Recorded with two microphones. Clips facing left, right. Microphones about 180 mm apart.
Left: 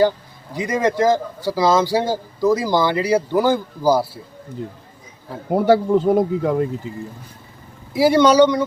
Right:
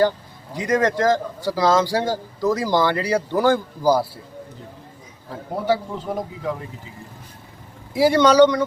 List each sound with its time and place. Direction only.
0.5 s speech: 5° left (ahead or behind)
5.5 s speech: 55° left (ahead or behind)
7.9 s speech: 10° left (ahead or behind)